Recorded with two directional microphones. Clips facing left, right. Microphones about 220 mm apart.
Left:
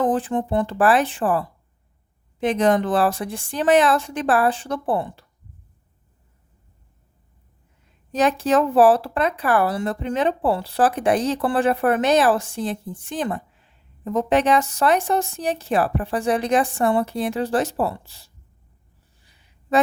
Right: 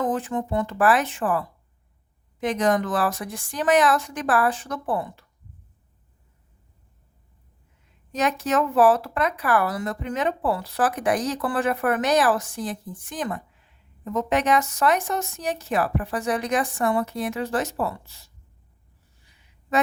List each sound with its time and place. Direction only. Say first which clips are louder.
0.0 s speech: left 4 dB; 30° left (ahead or behind)
8.1 s speech: left 5 dB; 30° left (ahead or behind)
19.2 s a sound: left 2 dB; 35° left (ahead or behind)